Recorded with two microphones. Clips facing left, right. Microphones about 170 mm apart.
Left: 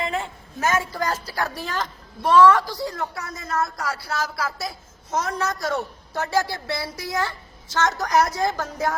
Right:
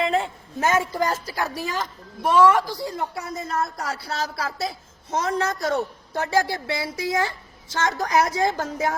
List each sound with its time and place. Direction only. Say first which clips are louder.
0.6 s a woman's voice: right 2 dB; 20° right (ahead or behind)
1.5 s a woman's voice: right 1 dB; 5° right (ahead or behind)
2.9 s a woman's voice: right 2 dB; 25° right (ahead or behind)